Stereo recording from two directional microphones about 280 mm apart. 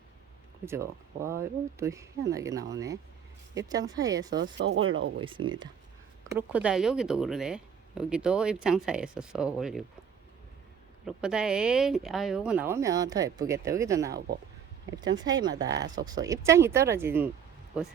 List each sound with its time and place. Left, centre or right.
0.6 s speech: centre
4.5 s speech: right
5.2 s speech: centre
6.3 s speech: centre
11.0 s speech: centre
15.2 s speech: centre